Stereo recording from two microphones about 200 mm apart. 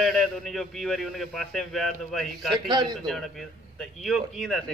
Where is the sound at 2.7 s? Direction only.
20° right (ahead or behind).